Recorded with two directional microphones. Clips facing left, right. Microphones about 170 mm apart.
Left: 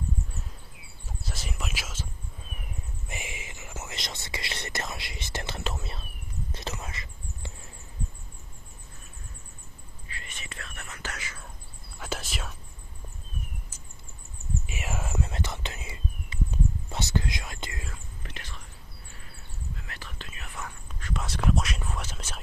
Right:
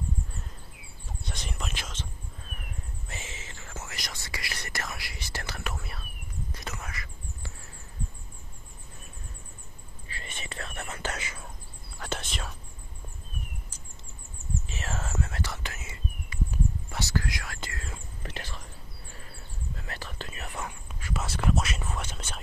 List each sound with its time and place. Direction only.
1.2 s whispering: 5° left (ahead or behind)
3.1 s whispering: 15° left (ahead or behind)
10.0 s whispering: 30° right (ahead or behind)
12.0 s whispering: 5° left (ahead or behind)
14.7 s whispering: 10° left (ahead or behind)
18.2 s whispering: 35° right (ahead or behind)
19.9 s whispering: 35° right (ahead or behind)
20.9 s whispering: 5° right (ahead or behind)